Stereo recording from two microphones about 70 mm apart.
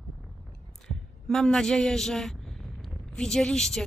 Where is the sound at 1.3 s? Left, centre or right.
Centre.